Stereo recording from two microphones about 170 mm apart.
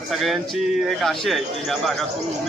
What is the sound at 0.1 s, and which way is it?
A man's voice, centre (ahead or behind).